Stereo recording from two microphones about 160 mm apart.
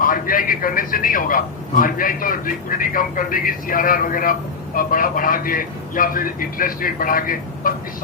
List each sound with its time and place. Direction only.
0.0 s a man's voice: 60° left (ahead or behind)